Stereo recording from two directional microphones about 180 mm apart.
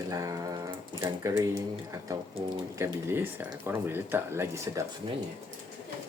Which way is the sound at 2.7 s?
10° right (ahead or behind).